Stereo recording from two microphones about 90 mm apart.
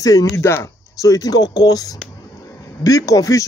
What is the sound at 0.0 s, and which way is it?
A man's voice, 40° left (ahead or behind).